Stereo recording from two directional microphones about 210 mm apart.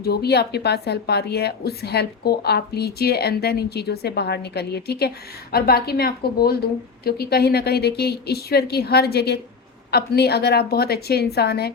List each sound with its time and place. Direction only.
0.0 s a woman's voice: 50° left (ahead or behind)